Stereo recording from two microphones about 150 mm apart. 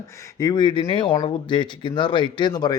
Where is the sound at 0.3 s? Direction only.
25° left (ahead or behind).